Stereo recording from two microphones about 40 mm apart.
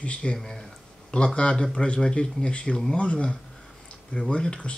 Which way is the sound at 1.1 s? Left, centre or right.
Left.